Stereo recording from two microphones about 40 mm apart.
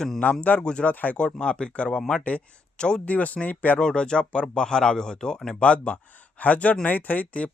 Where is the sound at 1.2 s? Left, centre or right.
Left.